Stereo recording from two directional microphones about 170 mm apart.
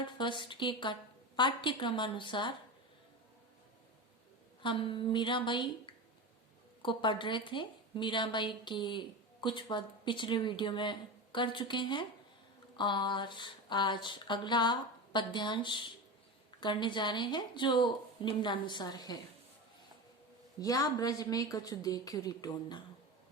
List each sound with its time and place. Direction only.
0.0 s a woman's voice: 30° left (ahead or behind)
4.6 s a woman's voice: 30° left (ahead or behind)
20.6 s a woman's voice: 20° left (ahead or behind)